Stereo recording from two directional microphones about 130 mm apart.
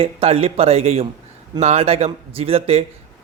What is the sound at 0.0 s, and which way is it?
Speech, 50° right (ahead or behind).